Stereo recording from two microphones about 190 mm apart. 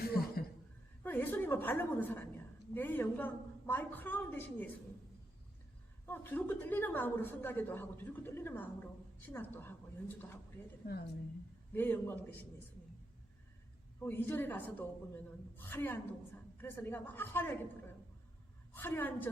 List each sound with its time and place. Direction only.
0.0 s a sound: 55° left (ahead or behind)
1.0 s a sound: 10° left (ahead or behind)
2.7 s a woman's voice: 10° left (ahead or behind)
6.1 s a woman's voice: 10° left (ahead or behind)
10.8 s a woman's voice: 45° left (ahead or behind)
11.7 s a woman's voice: 10° left (ahead or behind)
14.0 s a woman's voice: 10° left (ahead or behind)
18.7 s a woman's voice: 10° left (ahead or behind)